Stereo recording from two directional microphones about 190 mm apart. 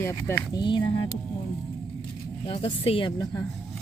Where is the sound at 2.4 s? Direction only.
30° left (ahead or behind).